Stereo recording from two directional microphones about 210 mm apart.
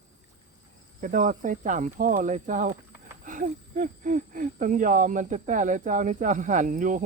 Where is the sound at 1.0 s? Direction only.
40° right (ahead or behind).